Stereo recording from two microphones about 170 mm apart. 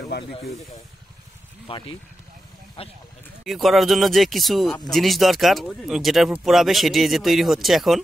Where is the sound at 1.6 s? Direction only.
30° left (ahead or behind).